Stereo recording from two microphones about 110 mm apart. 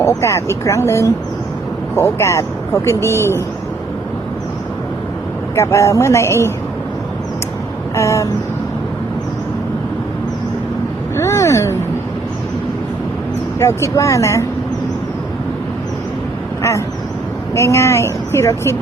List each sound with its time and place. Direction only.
0.0 s speech: 25° left (ahead or behind)
5.5 s speech: 25° left (ahead or behind)
7.9 s speech: 25° left (ahead or behind)
11.2 s a sound: 25° left (ahead or behind)
13.6 s speech: 25° left (ahead or behind)
17.5 s speech: 25° left (ahead or behind)